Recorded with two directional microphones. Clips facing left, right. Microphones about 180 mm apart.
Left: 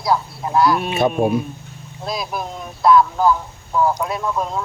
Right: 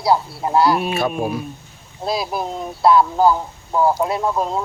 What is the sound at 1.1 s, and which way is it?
Speech, centre (ahead or behind).